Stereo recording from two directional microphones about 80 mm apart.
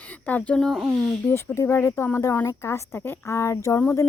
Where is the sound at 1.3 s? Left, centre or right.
Left.